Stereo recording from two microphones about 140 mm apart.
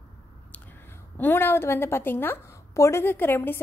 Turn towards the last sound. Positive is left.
turn(degrees=15)  # may be behind; listen again after turning